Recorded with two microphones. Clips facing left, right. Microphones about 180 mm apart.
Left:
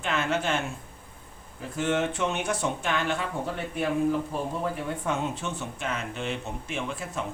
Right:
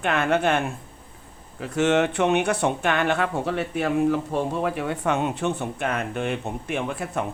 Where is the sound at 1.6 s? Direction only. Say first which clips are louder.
Right 6 dB; 80° right; by 7.2 s 60° right (ahead or behind).